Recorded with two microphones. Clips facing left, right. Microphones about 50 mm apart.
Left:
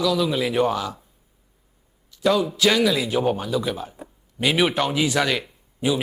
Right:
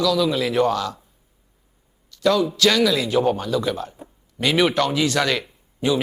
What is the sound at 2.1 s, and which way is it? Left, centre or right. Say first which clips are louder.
A man's voice: right 1 dB; centre.